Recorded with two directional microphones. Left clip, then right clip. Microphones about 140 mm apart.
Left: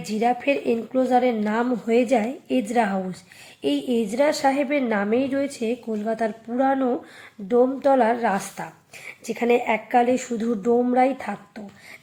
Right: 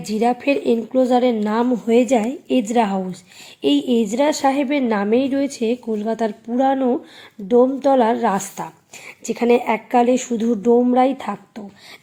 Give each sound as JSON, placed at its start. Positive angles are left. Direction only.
{"t": 0.0, "sound": "a woman's voice", "side_deg": -35}